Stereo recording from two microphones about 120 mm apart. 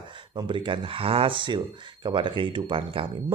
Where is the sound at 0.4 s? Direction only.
45° right (ahead or behind).